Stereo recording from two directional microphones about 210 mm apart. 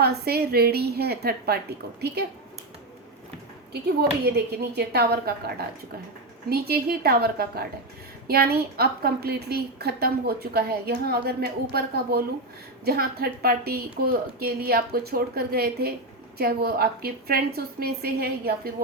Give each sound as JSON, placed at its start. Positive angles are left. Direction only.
{"t": 0.0, "sound": "a woman's voice", "side_deg": -50}
{"t": 3.7, "sound": "a woman's voice", "side_deg": -50}